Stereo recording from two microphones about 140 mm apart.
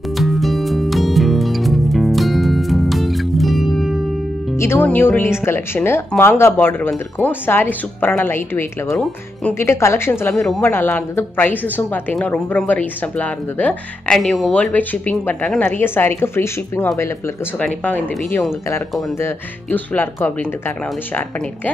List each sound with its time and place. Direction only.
0.2 s music: centre (ahead or behind)
4.6 s a woman's voice: 20° left (ahead or behind)